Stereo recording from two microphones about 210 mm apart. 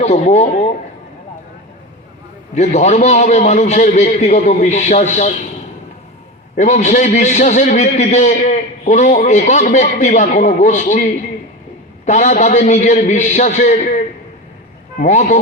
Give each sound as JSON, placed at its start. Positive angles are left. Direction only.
{"t": 0.0, "sound": "a man's voice", "side_deg": 30}
{"t": 2.6, "sound": "a man's voice", "side_deg": 35}
{"t": 6.6, "sound": "a man's voice", "side_deg": 35}